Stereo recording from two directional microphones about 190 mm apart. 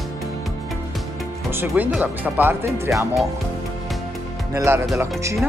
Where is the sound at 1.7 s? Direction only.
5° right (ahead or behind).